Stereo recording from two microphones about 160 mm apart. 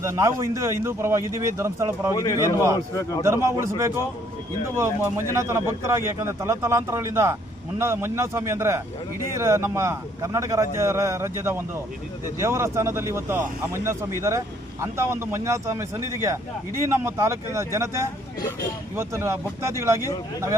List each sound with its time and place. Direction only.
0.0 s speech: 20° right (ahead or behind)
2.1 s a man's voice: 20° left (ahead or behind)
3.2 s speech: 15° right (ahead or behind)